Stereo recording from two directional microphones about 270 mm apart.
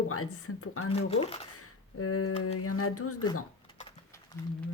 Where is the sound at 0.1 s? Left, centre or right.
Left.